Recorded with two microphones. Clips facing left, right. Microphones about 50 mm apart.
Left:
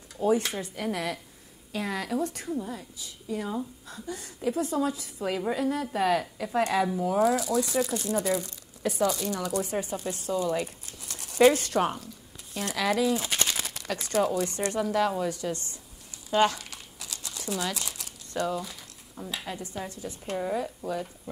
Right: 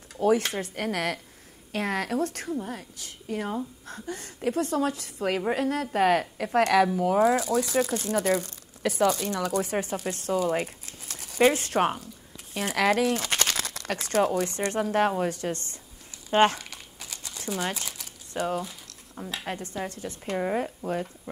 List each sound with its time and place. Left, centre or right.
0.2 s a woman's voice: right
7.2 s speech: right
7.6 s speech: right
12.7 s a woman's voice: right
13.4 s a sound: right
14.7 s a woman's voice: right
16.3 s crumpling: right
18.3 s speech: right
19.3 s a woman's voice: right
20.3 s speech: right